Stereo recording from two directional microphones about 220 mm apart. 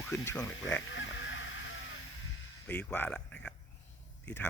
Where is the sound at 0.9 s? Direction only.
55° left (ahead or behind).